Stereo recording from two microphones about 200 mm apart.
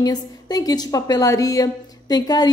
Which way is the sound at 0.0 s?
20° left (ahead or behind).